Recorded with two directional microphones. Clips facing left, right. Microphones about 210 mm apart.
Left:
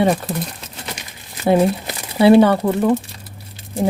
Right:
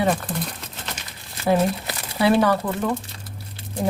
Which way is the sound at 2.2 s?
25° left (ahead or behind).